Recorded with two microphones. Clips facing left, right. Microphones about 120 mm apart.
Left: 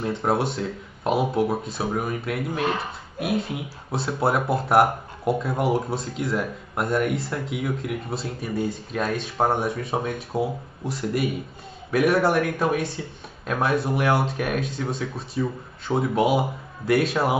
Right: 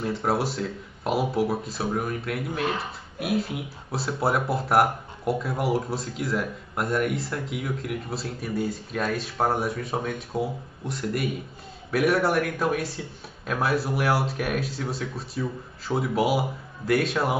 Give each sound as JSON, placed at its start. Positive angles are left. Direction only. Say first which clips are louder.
{"t": 0.0, "sound": "speech", "louder": "left 2 dB", "side_deg": 0}